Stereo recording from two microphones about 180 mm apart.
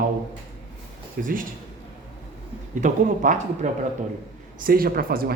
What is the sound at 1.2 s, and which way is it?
Speech, 50° right (ahead or behind).